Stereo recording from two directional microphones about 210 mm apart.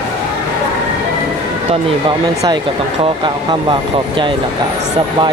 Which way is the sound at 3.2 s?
20° right (ahead or behind).